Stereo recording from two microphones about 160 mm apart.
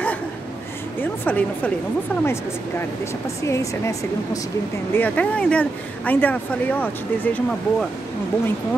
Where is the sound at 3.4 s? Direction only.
20° left (ahead or behind).